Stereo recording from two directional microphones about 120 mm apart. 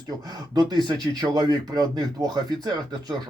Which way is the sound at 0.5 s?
35° right (ahead or behind).